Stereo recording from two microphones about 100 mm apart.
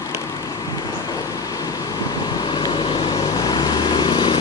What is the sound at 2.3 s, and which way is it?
Vehicle, 45° left (ahead or behind).